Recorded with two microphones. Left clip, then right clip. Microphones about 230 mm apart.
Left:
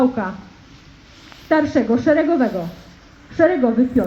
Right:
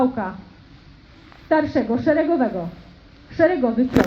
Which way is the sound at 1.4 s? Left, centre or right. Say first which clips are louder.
Left 2 dB; left.